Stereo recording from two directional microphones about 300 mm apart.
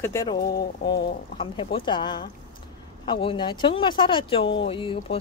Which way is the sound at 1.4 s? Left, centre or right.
Centre.